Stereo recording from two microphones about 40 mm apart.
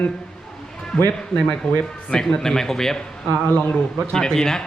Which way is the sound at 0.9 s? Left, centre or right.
Centre.